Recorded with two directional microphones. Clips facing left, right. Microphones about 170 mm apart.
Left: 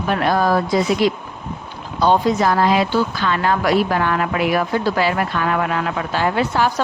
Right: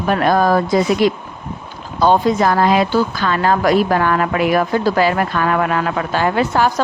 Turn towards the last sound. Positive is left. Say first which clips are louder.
# right 2 dB
turn(degrees=-50)  # may be behind; listen again after turning